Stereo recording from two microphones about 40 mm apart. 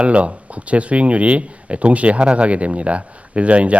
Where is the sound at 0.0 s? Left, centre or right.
Right.